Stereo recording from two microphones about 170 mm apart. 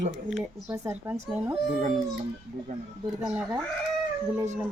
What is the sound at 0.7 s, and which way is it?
Speech, 15° right (ahead or behind).